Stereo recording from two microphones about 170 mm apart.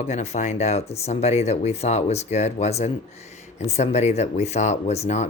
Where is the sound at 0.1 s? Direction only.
40° left (ahead or behind).